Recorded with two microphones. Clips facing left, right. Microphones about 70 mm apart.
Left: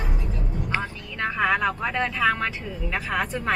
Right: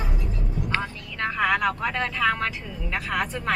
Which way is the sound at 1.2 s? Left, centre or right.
Centre.